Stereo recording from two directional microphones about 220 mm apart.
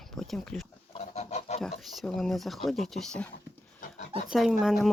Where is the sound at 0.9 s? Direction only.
30° left (ahead or behind).